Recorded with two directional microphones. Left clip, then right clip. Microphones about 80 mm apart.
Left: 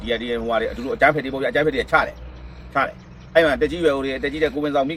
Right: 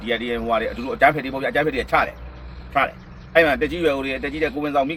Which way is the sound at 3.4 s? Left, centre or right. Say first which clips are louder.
Even; centre.